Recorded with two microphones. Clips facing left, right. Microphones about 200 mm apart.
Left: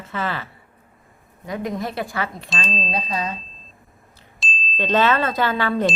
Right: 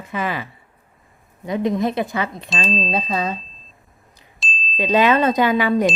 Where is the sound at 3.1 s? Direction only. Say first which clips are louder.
Right 4 dB; 30° right (ahead or behind).